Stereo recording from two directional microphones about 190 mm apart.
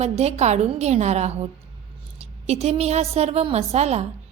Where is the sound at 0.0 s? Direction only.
35° right (ahead or behind).